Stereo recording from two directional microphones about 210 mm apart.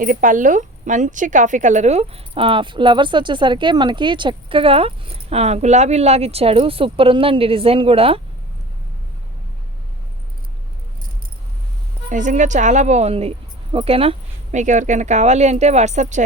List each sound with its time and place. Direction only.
0.0 s a woman's voice: 40° right (ahead or behind)
12.0 s speech: 35° right (ahead or behind)